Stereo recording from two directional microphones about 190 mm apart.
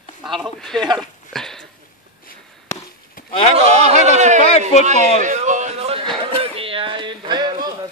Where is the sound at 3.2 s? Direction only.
45° left (ahead or behind).